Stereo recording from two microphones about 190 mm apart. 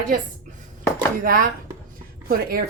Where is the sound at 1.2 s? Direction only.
50° right (ahead or behind).